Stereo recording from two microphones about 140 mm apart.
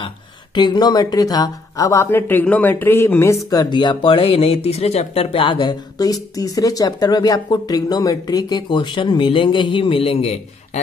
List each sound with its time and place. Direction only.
0.6 s speech: 30° left (ahead or behind)